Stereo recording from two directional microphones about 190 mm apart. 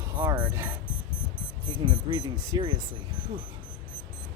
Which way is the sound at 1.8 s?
25° right (ahead or behind).